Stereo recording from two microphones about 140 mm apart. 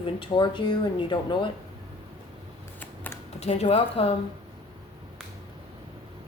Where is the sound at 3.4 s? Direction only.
50° left (ahead or behind).